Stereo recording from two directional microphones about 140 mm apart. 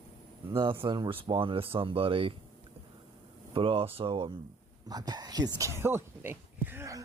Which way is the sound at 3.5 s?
40° right (ahead or behind).